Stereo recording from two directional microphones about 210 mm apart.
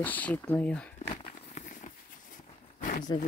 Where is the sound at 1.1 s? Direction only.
35° left (ahead or behind).